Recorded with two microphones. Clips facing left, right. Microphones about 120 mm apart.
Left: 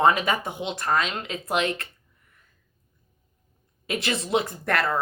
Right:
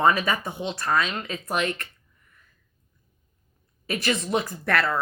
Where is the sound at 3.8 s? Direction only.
30° left (ahead or behind).